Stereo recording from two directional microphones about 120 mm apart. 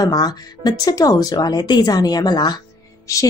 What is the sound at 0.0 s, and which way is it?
Speech, 35° left (ahead or behind).